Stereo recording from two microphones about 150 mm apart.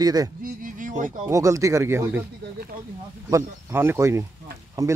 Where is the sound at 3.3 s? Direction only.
20° right (ahead or behind).